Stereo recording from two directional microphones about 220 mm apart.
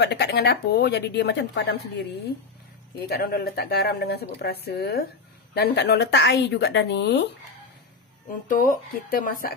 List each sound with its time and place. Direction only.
0.0 s speech: 50° left (ahead or behind)
8.5 s speech: 35° left (ahead or behind)